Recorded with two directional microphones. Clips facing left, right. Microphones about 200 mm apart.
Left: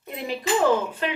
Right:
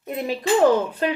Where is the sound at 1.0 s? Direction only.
40° right (ahead or behind).